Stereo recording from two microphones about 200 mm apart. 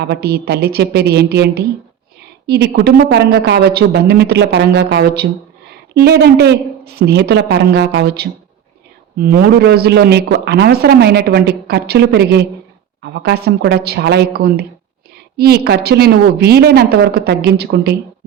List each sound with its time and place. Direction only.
0.0 s a woman's voice: 55° right (ahead or behind)